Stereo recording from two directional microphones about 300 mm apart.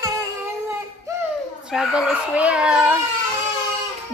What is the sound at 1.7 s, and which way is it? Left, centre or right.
A woman's voice, centre.